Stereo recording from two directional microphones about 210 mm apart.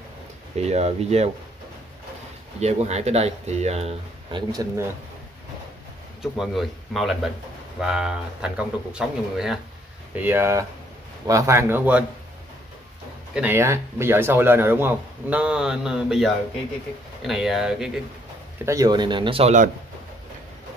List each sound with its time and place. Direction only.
0.6 s speech: 30° right (ahead or behind)
2.6 s speech: 30° right (ahead or behind)
4.5 s a man's voice: 15° right (ahead or behind)
6.3 s a man's voice: centre (ahead or behind)
13.3 s a man's voice: 10° right (ahead or behind)
18.7 s speech: 20° right (ahead or behind)